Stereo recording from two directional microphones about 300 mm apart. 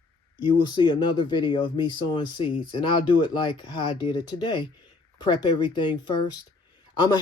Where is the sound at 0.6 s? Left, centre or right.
Centre.